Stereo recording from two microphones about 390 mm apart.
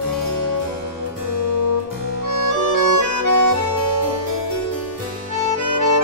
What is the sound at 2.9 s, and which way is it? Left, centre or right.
Accordion, right.